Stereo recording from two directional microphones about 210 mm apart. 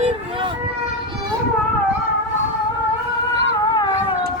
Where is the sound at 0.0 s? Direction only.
25° right (ahead or behind).